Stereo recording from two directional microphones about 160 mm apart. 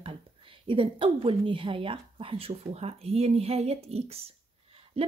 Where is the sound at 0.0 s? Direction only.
35° right (ahead or behind).